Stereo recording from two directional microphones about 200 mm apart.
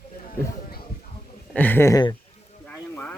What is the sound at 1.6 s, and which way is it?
Speech, 10° left (ahead or behind).